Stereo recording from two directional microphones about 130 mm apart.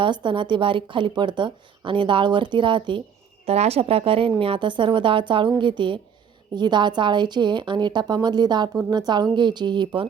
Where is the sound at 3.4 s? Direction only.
50° right (ahead or behind).